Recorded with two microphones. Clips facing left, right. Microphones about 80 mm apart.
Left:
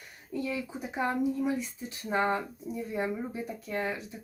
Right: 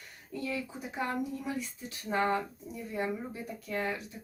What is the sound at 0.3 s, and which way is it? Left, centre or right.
Speech, centre.